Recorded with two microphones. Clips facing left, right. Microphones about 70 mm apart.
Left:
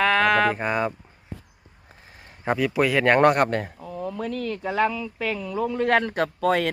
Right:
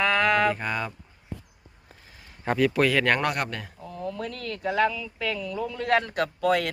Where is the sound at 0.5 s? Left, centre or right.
Left.